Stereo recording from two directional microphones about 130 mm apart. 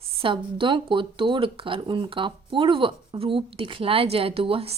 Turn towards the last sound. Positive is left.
turn(degrees=-45)  # may be behind; listen again after turning